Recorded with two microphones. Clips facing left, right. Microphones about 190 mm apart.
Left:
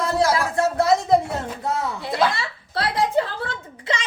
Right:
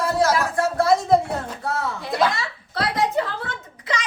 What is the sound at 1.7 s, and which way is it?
Speech, 20° left (ahead or behind).